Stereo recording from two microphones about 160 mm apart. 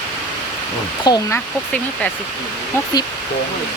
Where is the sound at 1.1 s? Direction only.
25° left (ahead or behind).